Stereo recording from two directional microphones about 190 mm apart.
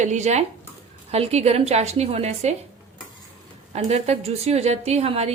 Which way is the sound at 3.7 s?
35° right (ahead or behind).